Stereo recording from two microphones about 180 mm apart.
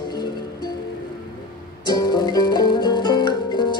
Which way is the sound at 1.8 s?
25° left (ahead or behind).